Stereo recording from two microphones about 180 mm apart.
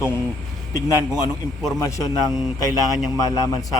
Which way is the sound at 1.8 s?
20° left (ahead or behind).